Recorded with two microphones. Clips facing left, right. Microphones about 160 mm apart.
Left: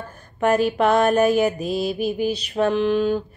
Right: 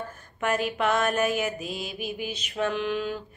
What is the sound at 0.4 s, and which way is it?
A woman's voice, 35° left (ahead or behind).